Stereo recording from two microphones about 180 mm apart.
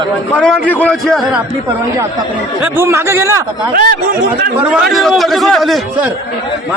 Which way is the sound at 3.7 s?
50° right (ahead or behind).